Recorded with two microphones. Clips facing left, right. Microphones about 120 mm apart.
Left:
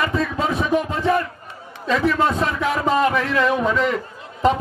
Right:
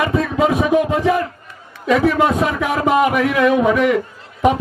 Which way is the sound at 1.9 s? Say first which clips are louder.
Right 4 dB; 20° right (ahead or behind).